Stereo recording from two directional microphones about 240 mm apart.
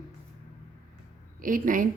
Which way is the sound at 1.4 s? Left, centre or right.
Right.